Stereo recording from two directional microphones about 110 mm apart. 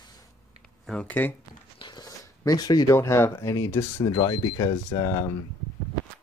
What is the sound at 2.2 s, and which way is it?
Speech, 35° left (ahead or behind).